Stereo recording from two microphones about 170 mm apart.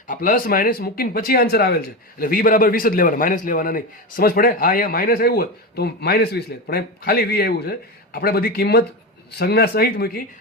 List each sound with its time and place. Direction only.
0.1 s speech: 55° left (ahead or behind)